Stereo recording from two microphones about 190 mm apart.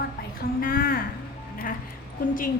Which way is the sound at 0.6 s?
50° left (ahead or behind).